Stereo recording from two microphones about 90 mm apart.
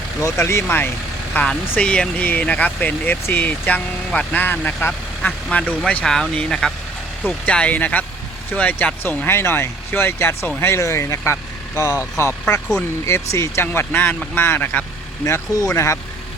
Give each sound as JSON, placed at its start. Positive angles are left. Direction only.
{"t": 0.2, "sound": "speech", "side_deg": 30}
{"t": 1.3, "sound": "speech", "side_deg": 15}
{"t": 15.2, "sound": "speech", "side_deg": 35}